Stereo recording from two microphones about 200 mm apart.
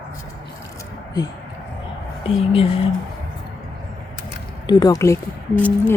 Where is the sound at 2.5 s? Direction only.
30° left (ahead or behind).